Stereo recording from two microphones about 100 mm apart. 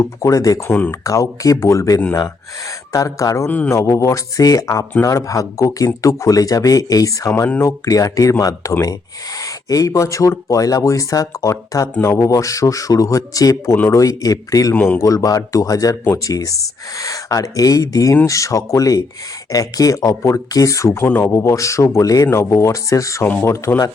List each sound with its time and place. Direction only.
0.0 s speech: 35° left (ahead or behind)
14.7 s speech: 20° left (ahead or behind)
15.0 s speech: 35° left (ahead or behind)
21.1 s speech: 20° left (ahead or behind)
21.3 s speech: 30° left (ahead or behind)